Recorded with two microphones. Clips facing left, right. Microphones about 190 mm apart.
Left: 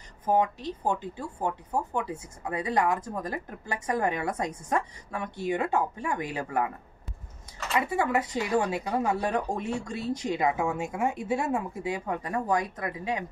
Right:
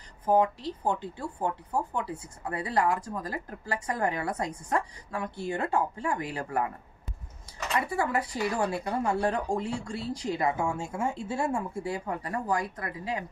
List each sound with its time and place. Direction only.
0.6 s speech: 20° left (ahead or behind)
7.8 s speech: 20° left (ahead or behind)